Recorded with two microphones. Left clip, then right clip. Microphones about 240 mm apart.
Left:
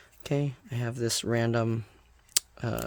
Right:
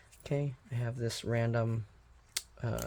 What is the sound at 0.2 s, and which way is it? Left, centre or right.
Speech, left.